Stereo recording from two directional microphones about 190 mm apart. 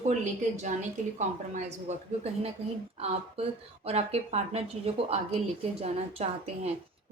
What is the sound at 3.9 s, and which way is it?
A woman's voice, 35° right (ahead or behind).